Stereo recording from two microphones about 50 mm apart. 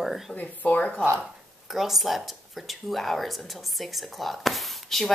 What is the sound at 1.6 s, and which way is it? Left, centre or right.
Speech, centre.